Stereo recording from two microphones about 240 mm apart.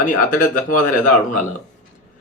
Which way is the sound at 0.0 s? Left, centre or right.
Left.